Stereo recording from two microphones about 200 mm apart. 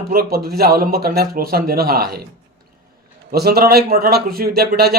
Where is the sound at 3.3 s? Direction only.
50° right (ahead or behind).